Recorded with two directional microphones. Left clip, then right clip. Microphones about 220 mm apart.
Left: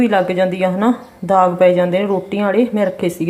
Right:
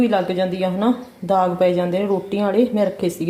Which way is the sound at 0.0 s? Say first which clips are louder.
Left 4 dB; 10° left (ahead or behind).